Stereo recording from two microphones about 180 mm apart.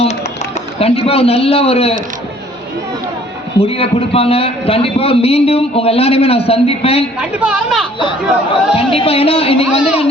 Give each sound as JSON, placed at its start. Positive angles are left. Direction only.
{"t": 0.8, "sound": "a man's voice", "side_deg": 35}
{"t": 3.7, "sound": "a man's voice", "side_deg": 30}
{"t": 7.2, "sound": "a woman's voice", "side_deg": -5}
{"t": 8.7, "sound": "a man's voice", "side_deg": 30}